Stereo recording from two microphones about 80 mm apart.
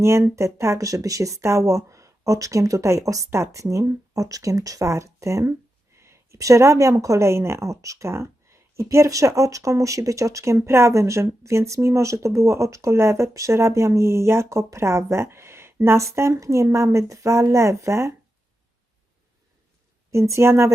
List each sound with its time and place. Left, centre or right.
0.0 s speech: right
20.1 s speech: right